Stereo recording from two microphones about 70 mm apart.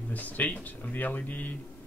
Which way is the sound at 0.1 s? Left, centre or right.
Left.